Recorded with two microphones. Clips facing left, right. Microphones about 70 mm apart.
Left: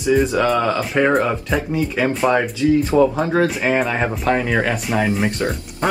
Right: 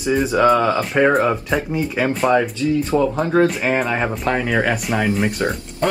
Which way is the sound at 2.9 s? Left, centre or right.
Centre.